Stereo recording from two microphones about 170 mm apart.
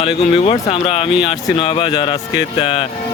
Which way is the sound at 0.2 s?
40° left (ahead or behind).